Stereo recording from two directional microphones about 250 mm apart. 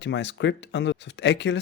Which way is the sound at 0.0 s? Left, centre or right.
Left.